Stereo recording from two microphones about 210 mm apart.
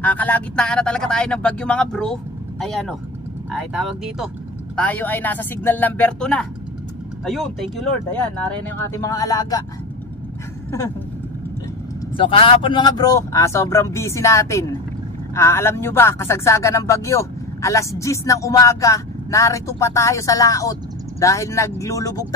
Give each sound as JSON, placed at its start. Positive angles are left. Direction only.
{"t": 0.0, "sound": "speech", "side_deg": 5}
{"t": 8.7, "sound": "speech", "side_deg": 15}
{"t": 12.2, "sound": "speech", "side_deg": 25}